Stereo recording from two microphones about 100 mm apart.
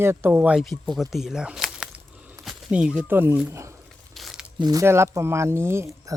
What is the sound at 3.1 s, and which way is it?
Speech, 20° right (ahead or behind).